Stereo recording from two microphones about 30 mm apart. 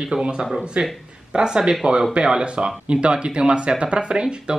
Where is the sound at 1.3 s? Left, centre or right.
Right.